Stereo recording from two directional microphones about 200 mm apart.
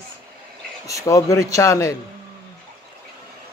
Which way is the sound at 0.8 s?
15° left (ahead or behind).